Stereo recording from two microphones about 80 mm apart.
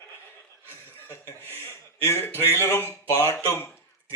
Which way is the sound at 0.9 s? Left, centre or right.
Left.